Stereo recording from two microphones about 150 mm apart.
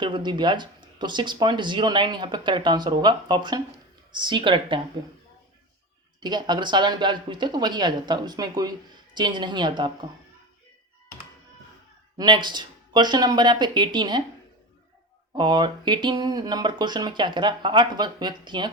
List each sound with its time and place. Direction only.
0.0 s speech: 30° right (ahead or behind)
6.1 s speech: 30° right (ahead or behind)
12.1 s speech: 30° right (ahead or behind)
15.4 s speech: 30° right (ahead or behind)